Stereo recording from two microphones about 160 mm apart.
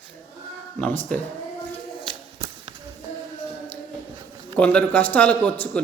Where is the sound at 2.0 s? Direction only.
35° right (ahead or behind).